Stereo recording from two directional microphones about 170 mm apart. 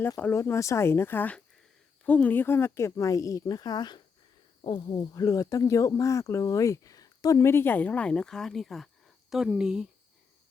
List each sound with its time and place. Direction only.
0.0 s speech: 10° left (ahead or behind); by 9.8 s 5° right (ahead or behind)